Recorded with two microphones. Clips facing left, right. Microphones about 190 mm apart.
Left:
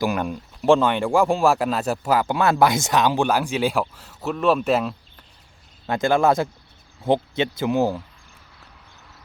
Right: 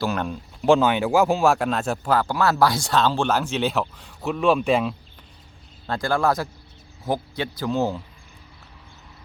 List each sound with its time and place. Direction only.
0.0 s speech: 10° left (ahead or behind)
0.6 s speech: centre (ahead or behind)
2.2 s speech: 20° left (ahead or behind); by 4.9 s centre (ahead or behind)
5.9 s speech: 20° left (ahead or behind)